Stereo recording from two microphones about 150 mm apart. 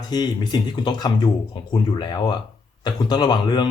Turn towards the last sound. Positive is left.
turn(degrees=30)  # may be behind; listen again after turning